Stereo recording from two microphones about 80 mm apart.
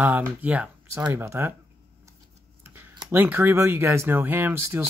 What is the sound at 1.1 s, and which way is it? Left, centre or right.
Speech, right.